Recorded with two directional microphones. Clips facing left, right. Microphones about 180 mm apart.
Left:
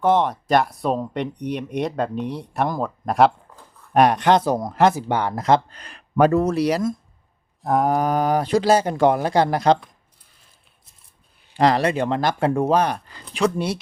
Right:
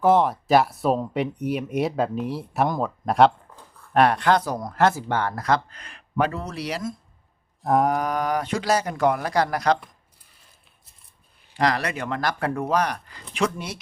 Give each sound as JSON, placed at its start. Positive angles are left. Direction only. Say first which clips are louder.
{"t": 0.0, "sound": "speech", "louder": "even", "side_deg": 0}
{"t": 3.9, "sound": "speech", "louder": "left 3 dB", "side_deg": 15}
{"t": 7.6, "sound": "mantra", "louder": "even", "side_deg": 0}
{"t": 7.9, "sound": "speech", "louder": "left 4 dB", "side_deg": 30}
{"t": 11.5, "sound": "speech", "louder": "left 6 dB", "side_deg": 30}